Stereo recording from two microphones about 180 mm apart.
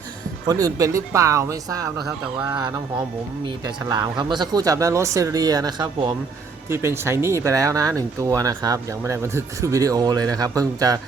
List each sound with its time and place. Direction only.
0.4 s speech: 20° right (ahead or behind)
3.8 s speech: 20° right (ahead or behind)